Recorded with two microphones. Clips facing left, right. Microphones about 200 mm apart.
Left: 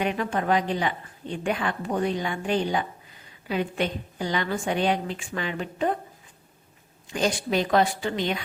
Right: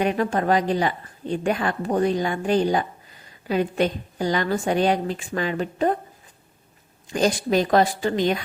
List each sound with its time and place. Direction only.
0.0 s a woman's voice: 40° right (ahead or behind)
7.1 s a woman's voice: 40° right (ahead or behind)